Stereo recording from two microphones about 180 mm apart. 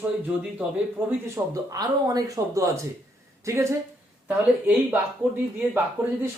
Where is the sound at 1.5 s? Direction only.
20° right (ahead or behind).